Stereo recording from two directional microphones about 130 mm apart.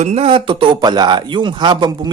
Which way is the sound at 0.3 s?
40° right (ahead or behind).